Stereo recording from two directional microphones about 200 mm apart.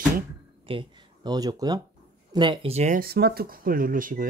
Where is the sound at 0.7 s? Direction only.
25° right (ahead or behind).